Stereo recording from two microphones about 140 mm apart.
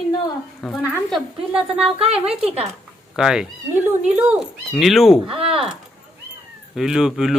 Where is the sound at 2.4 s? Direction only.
45° right (ahead or behind).